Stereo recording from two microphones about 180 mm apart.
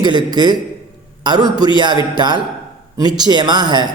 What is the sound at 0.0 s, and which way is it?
A man's voice, 25° right (ahead or behind).